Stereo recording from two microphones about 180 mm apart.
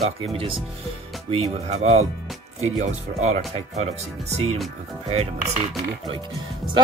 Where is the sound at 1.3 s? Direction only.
40° right (ahead or behind).